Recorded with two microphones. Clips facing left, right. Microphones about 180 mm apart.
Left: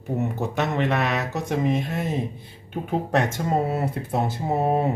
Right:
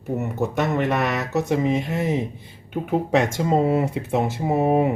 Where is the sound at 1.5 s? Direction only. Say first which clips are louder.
Even; 10° right (ahead or behind).